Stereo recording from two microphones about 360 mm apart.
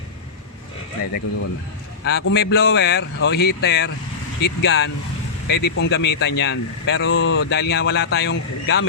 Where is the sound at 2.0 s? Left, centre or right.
Left.